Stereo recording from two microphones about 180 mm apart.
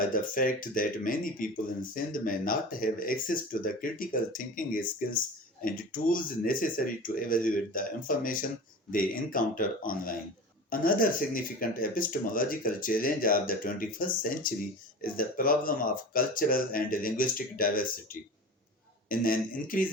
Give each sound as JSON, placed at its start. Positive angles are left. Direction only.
{"t": 0.0, "sound": "speech", "side_deg": 50}